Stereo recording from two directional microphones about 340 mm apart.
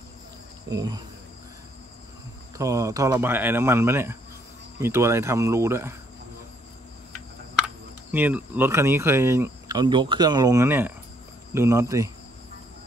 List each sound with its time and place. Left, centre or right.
0.7 s speech: centre
2.5 s speech: centre
7.6 s speech: centre